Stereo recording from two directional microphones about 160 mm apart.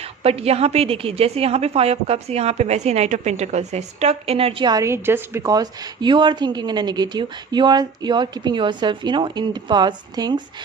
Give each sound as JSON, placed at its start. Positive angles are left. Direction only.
{"t": 0.0, "sound": "a woman's voice", "side_deg": -40}